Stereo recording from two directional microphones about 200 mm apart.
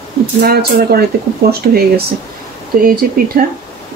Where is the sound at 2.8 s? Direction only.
45° right (ahead or behind).